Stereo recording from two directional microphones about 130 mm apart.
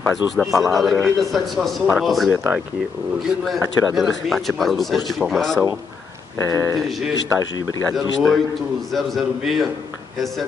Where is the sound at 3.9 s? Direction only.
Centre (ahead or behind).